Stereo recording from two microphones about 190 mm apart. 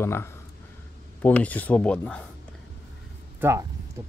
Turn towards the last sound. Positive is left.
turn(degrees=-15)  # may be behind; listen again after turning